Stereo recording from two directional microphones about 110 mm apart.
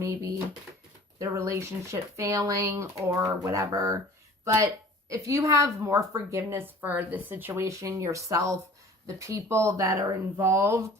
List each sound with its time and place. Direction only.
0.0 s a woman's voice: 30° right (ahead or behind)